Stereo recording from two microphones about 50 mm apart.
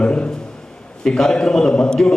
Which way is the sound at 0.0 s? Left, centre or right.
Left.